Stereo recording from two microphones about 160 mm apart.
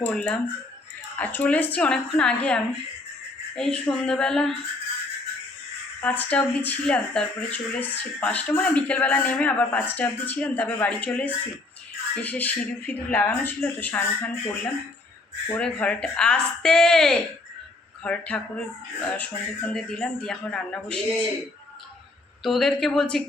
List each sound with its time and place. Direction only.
0.0 s speech: 5° left (ahead or behind)
6.0 s speech: 10° left (ahead or behind)
22.4 s speech: centre (ahead or behind)